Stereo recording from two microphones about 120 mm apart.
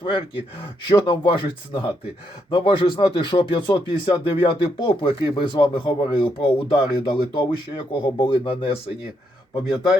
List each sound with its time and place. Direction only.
0.0 s speech: 40° left (ahead or behind)